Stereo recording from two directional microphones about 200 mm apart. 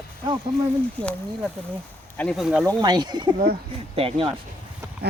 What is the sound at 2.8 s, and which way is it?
Speech, 20° right (ahead or behind).